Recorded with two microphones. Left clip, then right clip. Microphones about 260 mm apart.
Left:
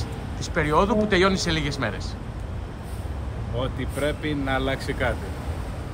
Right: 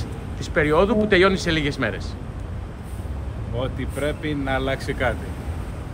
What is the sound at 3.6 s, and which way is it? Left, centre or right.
Speech, centre.